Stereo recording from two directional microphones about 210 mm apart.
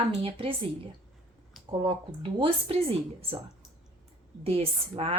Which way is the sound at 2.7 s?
25° right (ahead or behind).